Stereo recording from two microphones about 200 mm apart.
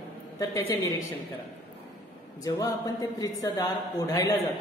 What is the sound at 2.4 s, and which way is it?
A woman's voice, 15° left (ahead or behind).